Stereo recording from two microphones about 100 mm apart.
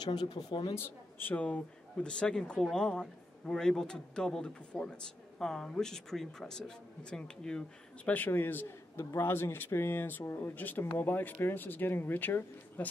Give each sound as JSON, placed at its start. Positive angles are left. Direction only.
{"t": 0.0, "sound": "speech", "side_deg": 45}
{"t": 0.7, "sound": "a man's voice", "side_deg": 15}